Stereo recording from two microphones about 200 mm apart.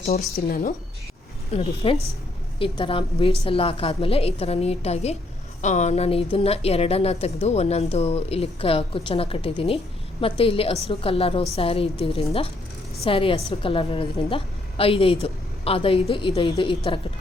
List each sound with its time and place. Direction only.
0.4 s a woman's voice: 45° left (ahead or behind)
1.5 s a woman's voice: 30° left (ahead or behind)